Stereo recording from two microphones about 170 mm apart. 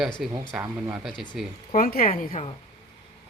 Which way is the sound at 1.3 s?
Centre (ahead or behind).